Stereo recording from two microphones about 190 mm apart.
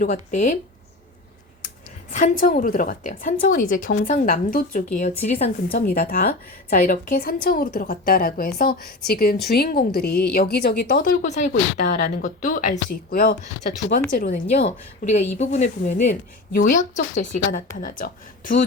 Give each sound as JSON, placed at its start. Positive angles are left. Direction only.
{"t": 0.0, "sound": "speech", "side_deg": 40}
{"t": 2.1, "sound": "speech", "side_deg": 45}
{"t": 5.7, "sound": "speech", "side_deg": 50}